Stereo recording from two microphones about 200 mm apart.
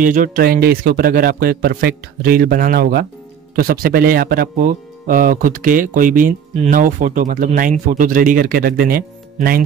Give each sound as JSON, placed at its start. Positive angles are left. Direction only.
{"t": 0.0, "sound": "speech", "side_deg": -40}